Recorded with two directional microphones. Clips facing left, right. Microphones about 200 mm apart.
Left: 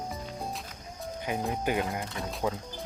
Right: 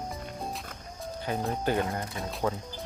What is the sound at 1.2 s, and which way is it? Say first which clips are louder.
Speech: right 1 dB; 15° left (ahead or behind).